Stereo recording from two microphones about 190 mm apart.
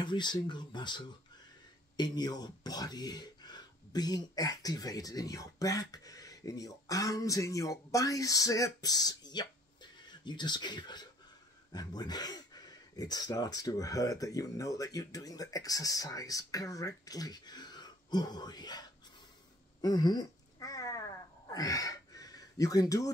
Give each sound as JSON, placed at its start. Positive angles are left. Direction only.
{"t": 0.0, "sound": "speech", "side_deg": 25}
{"t": 19.8, "sound": "cat", "side_deg": 20}
{"t": 21.5, "sound": "a sound", "side_deg": 20}